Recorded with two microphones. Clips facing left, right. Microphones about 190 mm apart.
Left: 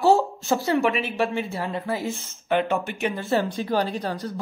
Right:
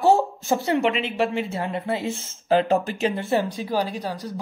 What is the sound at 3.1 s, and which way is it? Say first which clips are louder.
Speech: left 2 dB; 20° right (ahead or behind).